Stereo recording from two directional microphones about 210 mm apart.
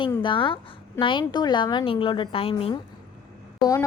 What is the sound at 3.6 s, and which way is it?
Speech, 15° left (ahead or behind).